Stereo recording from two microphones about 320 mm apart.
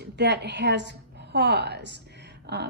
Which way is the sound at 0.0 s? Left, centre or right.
Right.